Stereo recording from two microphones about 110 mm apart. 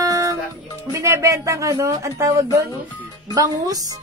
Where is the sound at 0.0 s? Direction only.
30° right (ahead or behind).